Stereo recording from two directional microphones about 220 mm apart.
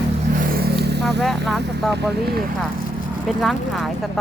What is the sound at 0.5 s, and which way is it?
Vehicle, 45° right (ahead or behind).